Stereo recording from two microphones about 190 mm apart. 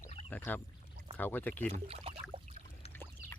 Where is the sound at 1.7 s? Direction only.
35° right (ahead or behind).